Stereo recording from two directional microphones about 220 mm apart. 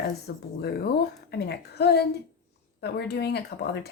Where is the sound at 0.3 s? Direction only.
50° left (ahead or behind).